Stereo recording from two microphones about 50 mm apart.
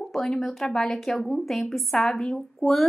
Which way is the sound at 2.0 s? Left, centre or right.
Centre.